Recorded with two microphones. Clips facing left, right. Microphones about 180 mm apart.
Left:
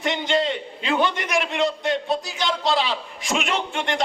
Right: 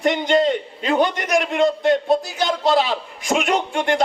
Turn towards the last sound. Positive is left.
turn(degrees=-45)  # may be behind; listen again after turning